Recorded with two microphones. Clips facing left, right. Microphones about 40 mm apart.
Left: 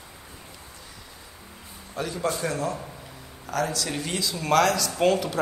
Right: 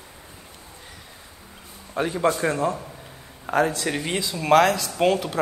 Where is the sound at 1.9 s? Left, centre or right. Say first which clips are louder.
Right 6 dB; right.